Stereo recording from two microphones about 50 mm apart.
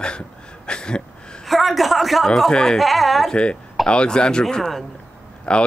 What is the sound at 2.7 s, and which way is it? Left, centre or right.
Speech, centre.